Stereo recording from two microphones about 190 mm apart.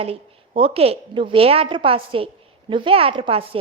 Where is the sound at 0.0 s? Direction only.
30° right (ahead or behind).